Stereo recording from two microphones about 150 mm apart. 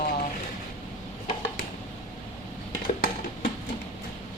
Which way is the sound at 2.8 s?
75° left (ahead or behind).